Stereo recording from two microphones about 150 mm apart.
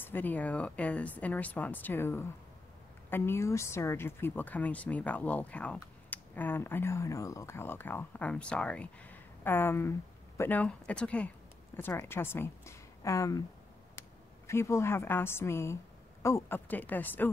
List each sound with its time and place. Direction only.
0.0 s speech: 10° left (ahead or behind)
14.5 s speech: 15° left (ahead or behind)